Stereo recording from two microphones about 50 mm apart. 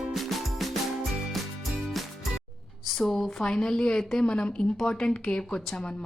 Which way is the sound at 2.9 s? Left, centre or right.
Centre.